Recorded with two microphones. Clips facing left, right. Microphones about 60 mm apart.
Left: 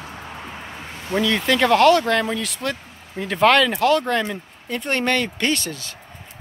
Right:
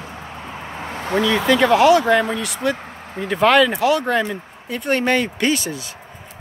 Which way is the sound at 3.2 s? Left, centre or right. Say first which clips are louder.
Right 2 dB; centre.